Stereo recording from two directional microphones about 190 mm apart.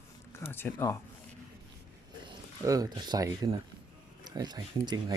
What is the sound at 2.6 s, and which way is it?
Speech, 20° right (ahead or behind).